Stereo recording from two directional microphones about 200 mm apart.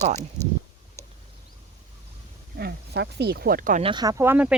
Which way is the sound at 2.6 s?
55° right (ahead or behind).